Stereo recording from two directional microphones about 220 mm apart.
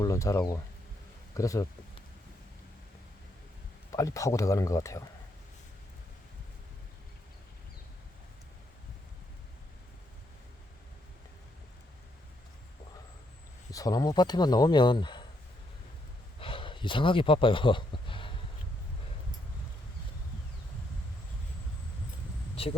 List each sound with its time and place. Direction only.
0.0 s speech: 15° left (ahead or behind)
3.9 s speech: 15° left (ahead or behind)
13.7 s speech: 15° left (ahead or behind)
16.4 s speech: 25° left (ahead or behind)
22.6 s a sound: 25° left (ahead or behind)